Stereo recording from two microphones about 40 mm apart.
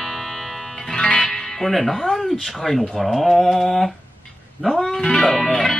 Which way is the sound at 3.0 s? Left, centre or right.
Centre.